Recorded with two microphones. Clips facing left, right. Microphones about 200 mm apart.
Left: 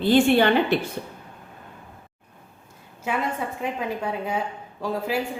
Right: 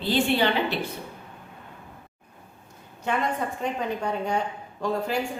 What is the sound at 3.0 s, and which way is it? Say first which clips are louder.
A woman's voice: even; 5° left (ahead or behind).